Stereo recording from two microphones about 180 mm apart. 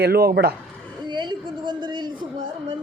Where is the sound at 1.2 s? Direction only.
25° right (ahead or behind).